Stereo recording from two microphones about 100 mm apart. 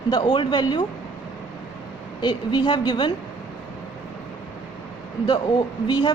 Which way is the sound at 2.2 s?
50° left (ahead or behind).